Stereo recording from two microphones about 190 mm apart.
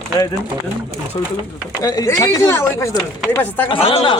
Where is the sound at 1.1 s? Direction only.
25° left (ahead or behind); by 3.7 s 10° left (ahead or behind).